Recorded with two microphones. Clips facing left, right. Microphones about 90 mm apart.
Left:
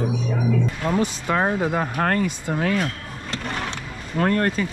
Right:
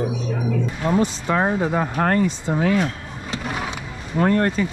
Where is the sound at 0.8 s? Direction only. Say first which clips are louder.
Right 4 dB; 15° right (ahead or behind).